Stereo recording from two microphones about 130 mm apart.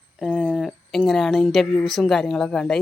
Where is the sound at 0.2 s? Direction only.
5° left (ahead or behind).